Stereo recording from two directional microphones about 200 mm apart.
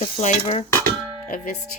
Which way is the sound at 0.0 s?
35° left (ahead or behind).